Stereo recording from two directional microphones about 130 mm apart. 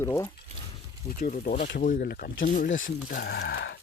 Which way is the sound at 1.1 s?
90° left.